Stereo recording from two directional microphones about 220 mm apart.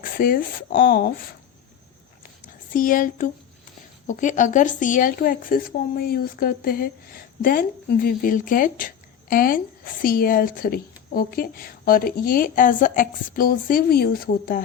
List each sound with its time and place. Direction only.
0.0 s speech: 40° left (ahead or behind)
2.7 s speech: 40° left (ahead or behind)